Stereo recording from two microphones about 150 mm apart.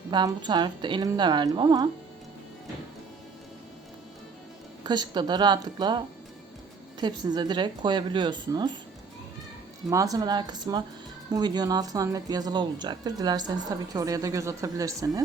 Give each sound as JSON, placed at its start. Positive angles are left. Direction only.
{"t": 0.1, "sound": "speech", "side_deg": -30}
{"t": 4.8, "sound": "speech", "side_deg": -30}
{"t": 7.0, "sound": "speech", "side_deg": -30}
{"t": 9.9, "sound": "speech", "side_deg": -25}